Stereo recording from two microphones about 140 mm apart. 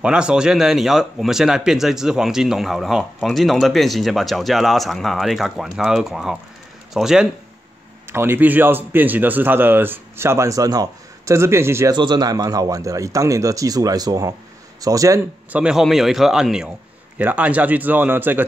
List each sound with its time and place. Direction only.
0.0 s speech: 5° right (ahead or behind)
8.1 s a man's voice: 15° right (ahead or behind)
11.9 s speech: 30° right (ahead or behind)
15.5 s a man's voice: 5° right (ahead or behind)